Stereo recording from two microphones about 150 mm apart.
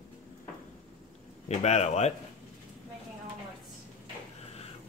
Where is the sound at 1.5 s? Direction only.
45° left (ahead or behind).